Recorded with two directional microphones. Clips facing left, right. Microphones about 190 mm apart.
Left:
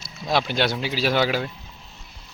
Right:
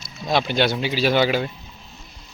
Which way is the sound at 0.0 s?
5° left (ahead or behind).